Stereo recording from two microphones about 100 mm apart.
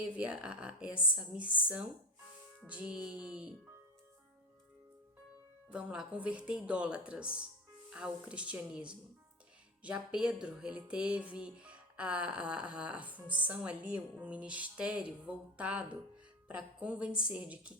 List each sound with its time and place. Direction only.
0.2 s music: 10° right (ahead or behind)
5.6 s music: 10° right (ahead or behind)